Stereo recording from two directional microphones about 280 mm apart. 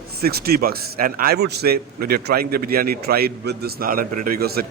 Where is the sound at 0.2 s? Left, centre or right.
Right.